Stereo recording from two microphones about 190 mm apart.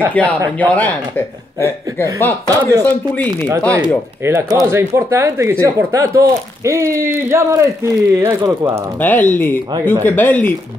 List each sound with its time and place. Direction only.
0.1 s speech: 10° left (ahead or behind)
2.4 s speech: 15° right (ahead or behind)
2.8 s speech: 10° left (ahead or behind)
3.3 s speech: 15° right (ahead or behind)
9.0 s speech: 10° left (ahead or behind)